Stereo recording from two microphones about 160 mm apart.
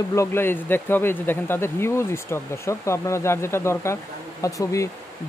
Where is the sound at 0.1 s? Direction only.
15° left (ahead or behind).